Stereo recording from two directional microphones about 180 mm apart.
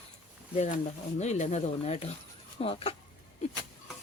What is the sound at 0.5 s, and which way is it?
Speech, 40° left (ahead or behind).